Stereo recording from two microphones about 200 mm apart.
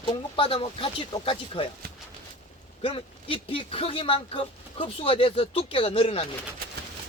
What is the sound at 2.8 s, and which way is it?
Speech, 25° left (ahead or behind).